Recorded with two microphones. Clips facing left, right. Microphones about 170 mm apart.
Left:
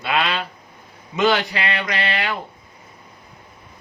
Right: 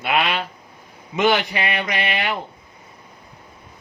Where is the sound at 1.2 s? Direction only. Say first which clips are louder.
Even; 20° right (ahead or behind).